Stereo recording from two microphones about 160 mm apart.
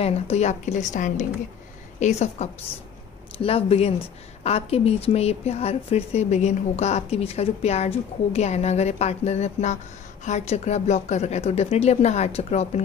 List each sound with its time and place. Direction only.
0.0 s a woman's voice: 40° left (ahead or behind)